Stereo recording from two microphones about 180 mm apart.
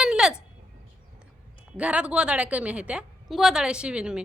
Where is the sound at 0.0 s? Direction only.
5° right (ahead or behind).